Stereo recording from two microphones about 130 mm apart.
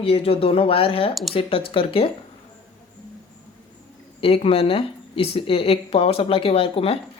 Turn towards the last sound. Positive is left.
turn(degrees=50)  # may be behind; listen again after turning